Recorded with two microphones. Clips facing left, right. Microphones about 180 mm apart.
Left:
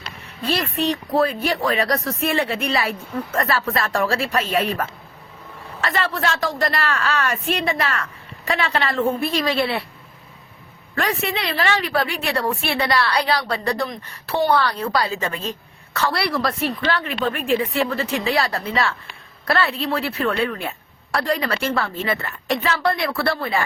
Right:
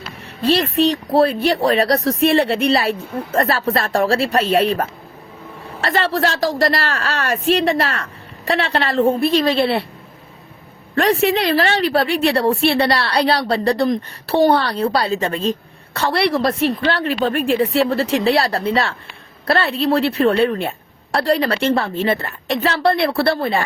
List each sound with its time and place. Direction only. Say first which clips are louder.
0.4 s a woman's voice: right 6 dB; 35° right (ahead or behind)
10.9 s a woman's voice: right 8 dB; 35° right (ahead or behind)